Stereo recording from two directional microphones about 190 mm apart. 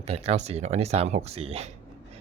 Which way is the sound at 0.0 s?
30° right (ahead or behind).